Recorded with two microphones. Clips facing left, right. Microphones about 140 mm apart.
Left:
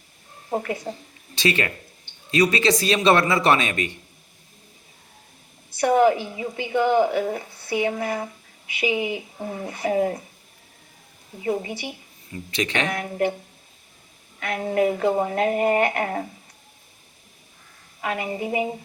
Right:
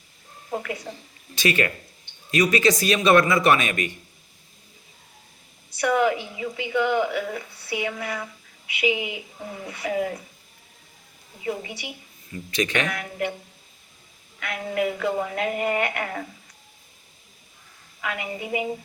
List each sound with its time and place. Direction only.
0.5 s a woman's voice: 35° left (ahead or behind)
5.8 s a woman's voice: 35° left (ahead or behind)
11.4 s a woman's voice: 30° left (ahead or behind)
14.3 s a woman's voice: 35° left (ahead or behind)
18.0 s a woman's voice: 35° left (ahead or behind)